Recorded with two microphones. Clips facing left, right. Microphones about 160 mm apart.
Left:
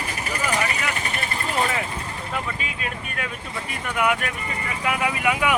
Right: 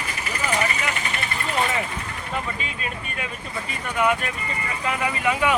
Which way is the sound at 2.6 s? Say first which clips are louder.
Even; 5° left (ahead or behind).